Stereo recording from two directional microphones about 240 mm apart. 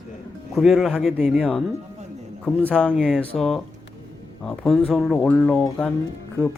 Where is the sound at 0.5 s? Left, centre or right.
Centre.